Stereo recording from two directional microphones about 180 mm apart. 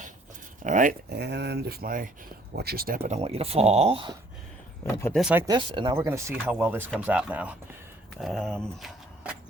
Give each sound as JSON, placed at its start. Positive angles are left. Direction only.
{"t": 0.6, "sound": "speech", "side_deg": -45}
{"t": 3.0, "sound": "speech", "side_deg": -35}
{"t": 5.1, "sound": "speech", "side_deg": -5}
{"t": 5.5, "sound": "speech", "side_deg": -25}
{"t": 6.1, "sound": "speech", "side_deg": -15}